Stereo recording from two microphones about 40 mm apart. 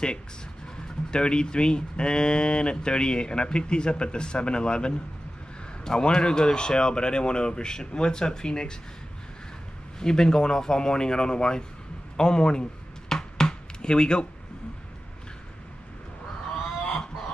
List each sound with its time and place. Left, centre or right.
1.1 s speech: left
9.9 s speech: centre
13.1 s chopping: centre